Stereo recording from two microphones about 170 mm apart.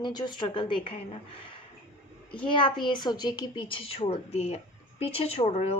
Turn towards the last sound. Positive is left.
turn(degrees=40)  # may be behind; listen again after turning